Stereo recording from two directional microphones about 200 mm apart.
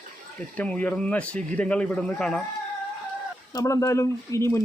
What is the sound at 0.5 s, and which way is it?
Speech, 5° left (ahead or behind).